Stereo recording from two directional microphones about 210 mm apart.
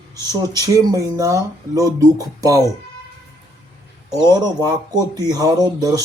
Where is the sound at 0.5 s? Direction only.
15° right (ahead or behind).